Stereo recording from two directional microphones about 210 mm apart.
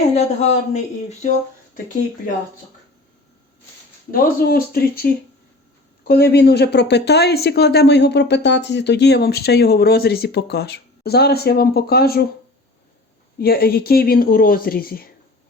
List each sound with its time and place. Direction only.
0.1 s a woman's voice: 30° left (ahead or behind)
4.1 s speech: 45° left (ahead or behind)
13.4 s speech: 45° left (ahead or behind)